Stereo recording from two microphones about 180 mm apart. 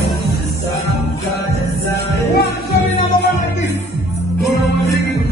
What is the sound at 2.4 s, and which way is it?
Music, 60° left (ahead or behind).